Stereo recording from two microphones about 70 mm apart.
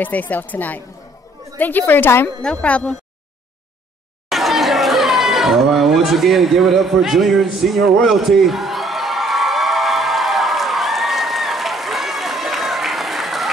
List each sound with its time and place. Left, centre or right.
0.0 s speech: left
2.4 s speech: centre
4.3 s chatter: centre